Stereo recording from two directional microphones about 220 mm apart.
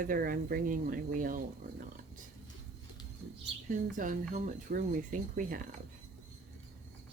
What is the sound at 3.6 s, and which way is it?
Speech, 35° right (ahead or behind).